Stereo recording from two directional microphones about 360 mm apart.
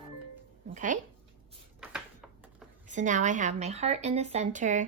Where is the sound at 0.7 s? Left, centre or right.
Right.